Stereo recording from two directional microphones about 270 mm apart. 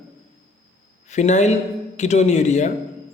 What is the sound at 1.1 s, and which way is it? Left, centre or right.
A man's voice, left.